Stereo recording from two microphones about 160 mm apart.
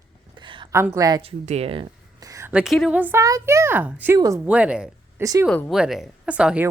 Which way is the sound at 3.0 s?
15° right (ahead or behind).